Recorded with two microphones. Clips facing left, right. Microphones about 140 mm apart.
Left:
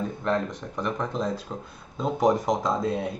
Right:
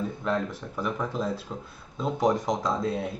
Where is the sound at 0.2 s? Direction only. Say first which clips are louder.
Left 3 dB; 5° right (ahead or behind).